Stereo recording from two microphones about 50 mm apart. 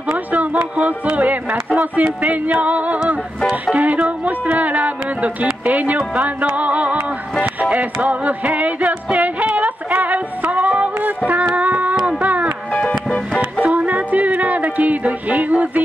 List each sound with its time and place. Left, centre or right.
0.3 s speech: right
7.7 s music: right